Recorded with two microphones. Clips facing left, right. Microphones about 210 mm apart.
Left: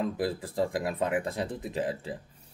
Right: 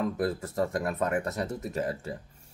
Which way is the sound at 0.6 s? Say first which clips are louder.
Even; 15° left (ahead or behind).